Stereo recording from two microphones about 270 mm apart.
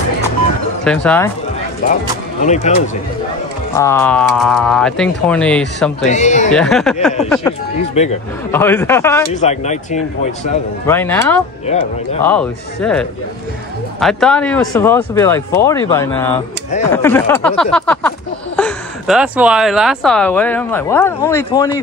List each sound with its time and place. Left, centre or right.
0.8 s a woman's voice: centre
1.8 s speech: left
3.7 s a woman's voice: centre
6.0 s speech: left
6.5 s a woman's voice: centre
8.0 s speech: left
8.5 s speech: centre
9.3 s speech: left
10.9 s speech: centre
11.6 s speech: left
12.2 s a woman's voice: centre